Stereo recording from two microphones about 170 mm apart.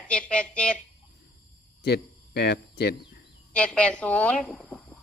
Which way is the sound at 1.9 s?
70° left (ahead or behind).